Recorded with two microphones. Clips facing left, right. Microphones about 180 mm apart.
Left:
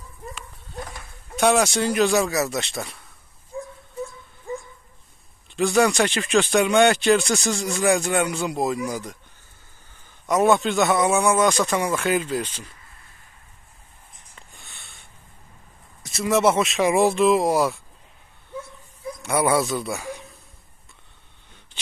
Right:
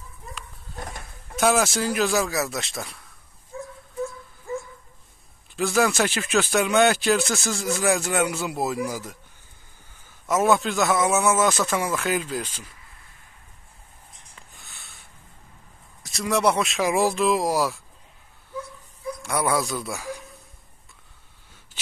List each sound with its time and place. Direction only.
0.3 s goat: centre (ahead or behind)
1.3 s speech: centre (ahead or behind)
4.5 s dog: 15° left (ahead or behind)
5.6 s speech: centre (ahead or behind)
10.2 s speech: centre (ahead or behind)
14.5 s a sound: centre (ahead or behind)
16.0 s speech: centre (ahead or behind)
19.2 s speech: centre (ahead or behind)